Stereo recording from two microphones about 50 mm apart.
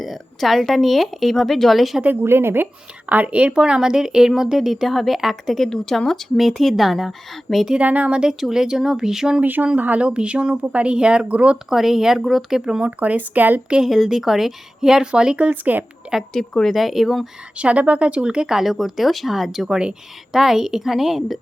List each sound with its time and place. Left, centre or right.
0.0 s a woman's voice: centre
2.2 s a woman's voice: right
3.1 s speech: right
3.5 s a woman's voice: centre
7.8 s speech: right
8.3 s speech: centre
9.4 s speech: right
11.7 s speech: centre
13.0 s speech: right
13.8 s speech: centre
15.4 s speech: right
16.3 s speech: centre
16.7 s a woman's voice: centre
17.6 s a woman's voice: right; by 21.3 s centre